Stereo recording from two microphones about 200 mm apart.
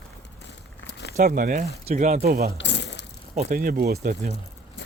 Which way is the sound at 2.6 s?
60° left (ahead or behind).